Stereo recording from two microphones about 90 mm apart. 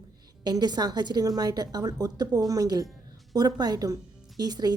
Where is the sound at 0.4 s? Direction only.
50° right (ahead or behind).